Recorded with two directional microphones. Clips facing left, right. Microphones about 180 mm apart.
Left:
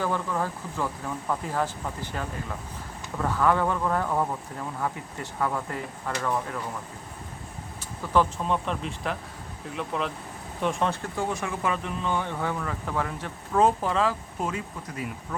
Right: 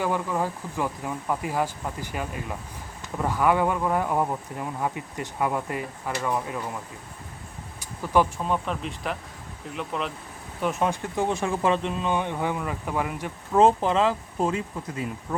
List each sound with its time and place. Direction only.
0.0 s speech: 15° right (ahead or behind)
7.8 s speech: 15° right (ahead or behind)
8.5 s speech: centre (ahead or behind)
11.0 s speech: 20° right (ahead or behind)
13.6 s speech: 25° right (ahead or behind)